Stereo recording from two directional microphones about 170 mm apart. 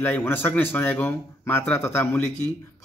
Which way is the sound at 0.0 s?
10° left (ahead or behind).